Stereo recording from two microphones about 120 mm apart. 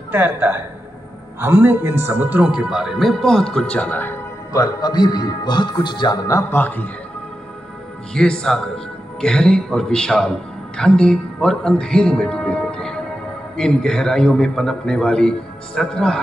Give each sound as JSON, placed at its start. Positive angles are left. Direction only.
{"t": 0.1, "sound": "a man's voice", "side_deg": -15}
{"t": 4.5, "sound": "a man's voice", "side_deg": 30}
{"t": 6.2, "sound": "a man's voice", "side_deg": 25}
{"t": 6.6, "sound": "a man's voice", "side_deg": 15}
{"t": 8.1, "sound": "a man's voice", "side_deg": 5}